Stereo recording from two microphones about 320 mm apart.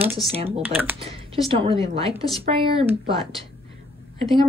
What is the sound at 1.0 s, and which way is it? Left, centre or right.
Speech, centre.